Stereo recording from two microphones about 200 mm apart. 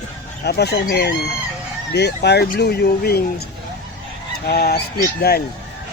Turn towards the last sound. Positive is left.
turn(degrees=50)  # may be behind; listen again after turning